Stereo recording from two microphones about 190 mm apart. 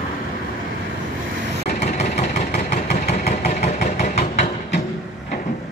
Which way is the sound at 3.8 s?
35° left (ahead or behind).